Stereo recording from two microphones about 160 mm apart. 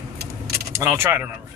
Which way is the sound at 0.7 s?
15° right (ahead or behind).